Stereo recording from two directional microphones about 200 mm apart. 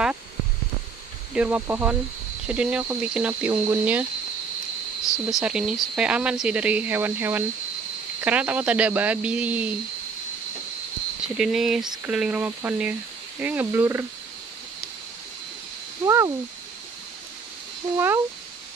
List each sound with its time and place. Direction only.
1.3 s speech: 5° right (ahead or behind)
5.3 s speech: 5° right (ahead or behind)
11.2 s speech: 5° right (ahead or behind)
16.1 s speech: 15° right (ahead or behind)
17.9 s speech: 10° right (ahead or behind)